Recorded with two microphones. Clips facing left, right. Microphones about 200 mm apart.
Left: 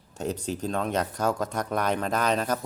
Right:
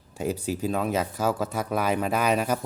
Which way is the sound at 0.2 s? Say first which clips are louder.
Right 2 dB; 5° right (ahead or behind).